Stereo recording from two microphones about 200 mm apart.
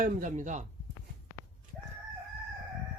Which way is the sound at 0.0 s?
40° right (ahead or behind).